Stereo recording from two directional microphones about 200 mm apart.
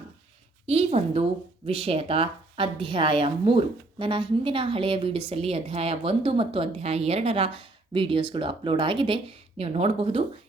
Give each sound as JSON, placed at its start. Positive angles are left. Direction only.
{"t": 0.7, "sound": "a woman's voice", "side_deg": -30}